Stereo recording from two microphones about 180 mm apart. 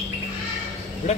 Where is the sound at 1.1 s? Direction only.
40° left (ahead or behind).